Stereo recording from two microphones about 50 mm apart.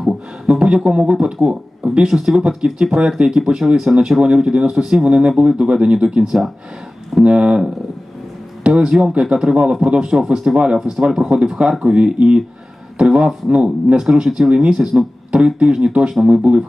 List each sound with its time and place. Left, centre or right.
0.0 s speech: centre
1.5 s a sound: right
2.0 s speech: centre; by 16.6 s right